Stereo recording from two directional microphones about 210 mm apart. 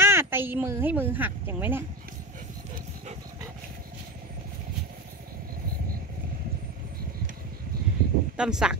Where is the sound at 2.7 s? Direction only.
35° right (ahead or behind).